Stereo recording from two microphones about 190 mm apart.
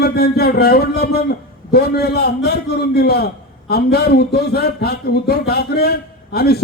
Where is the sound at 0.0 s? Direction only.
55° left (ahead or behind).